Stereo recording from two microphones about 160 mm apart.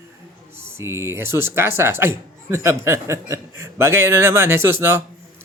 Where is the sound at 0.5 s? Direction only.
15° right (ahead or behind).